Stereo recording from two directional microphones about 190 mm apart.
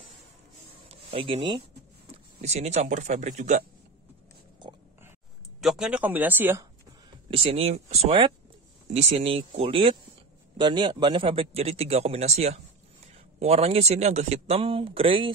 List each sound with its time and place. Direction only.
0.8 s a sound: 30° right (ahead or behind)
2.4 s a man's voice: 35° right (ahead or behind)
5.6 s speech: centre (ahead or behind)
7.2 s a man's voice: 30° right (ahead or behind)